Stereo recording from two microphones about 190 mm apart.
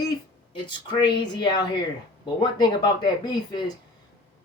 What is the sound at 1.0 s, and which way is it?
Speech, 20° left (ahead or behind).